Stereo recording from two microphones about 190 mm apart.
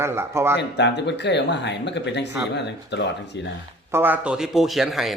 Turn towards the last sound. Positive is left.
turn(degrees=0)  # may be behind; listen again after turning